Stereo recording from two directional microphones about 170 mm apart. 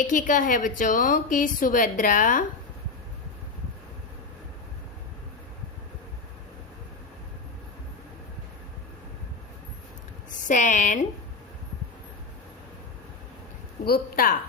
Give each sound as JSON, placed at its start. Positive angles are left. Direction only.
{"t": 0.1, "sound": "a woman's voice", "side_deg": 50}
{"t": 10.4, "sound": "a woman's voice", "side_deg": 45}
{"t": 13.8, "sound": "speech", "side_deg": 60}